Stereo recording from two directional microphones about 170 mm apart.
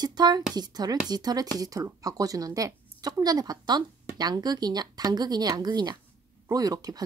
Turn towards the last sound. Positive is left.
turn(degrees=-20)  # may be behind; listen again after turning